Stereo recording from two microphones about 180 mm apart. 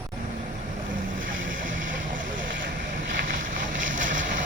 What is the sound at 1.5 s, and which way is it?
Vehicle, 50° right (ahead or behind).